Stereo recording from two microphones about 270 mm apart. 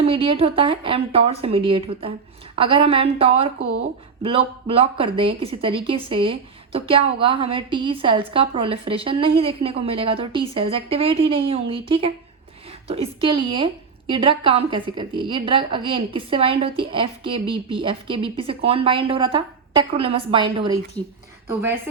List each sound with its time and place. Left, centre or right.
0.0 s a woman's voice: centre
21.0 s speech: centre